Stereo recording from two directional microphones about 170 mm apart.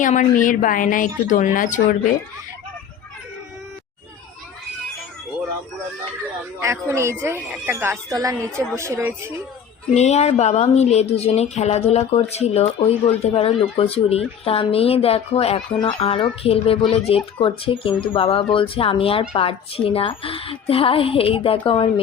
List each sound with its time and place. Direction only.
0.0 s a woman's voice: 50° left (ahead or behind)
6.6 s a woman's voice: 15° right (ahead or behind)
9.9 s speech: 40° left (ahead or behind)